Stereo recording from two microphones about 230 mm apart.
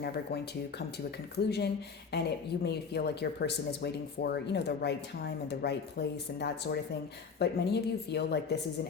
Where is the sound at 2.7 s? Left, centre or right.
Left.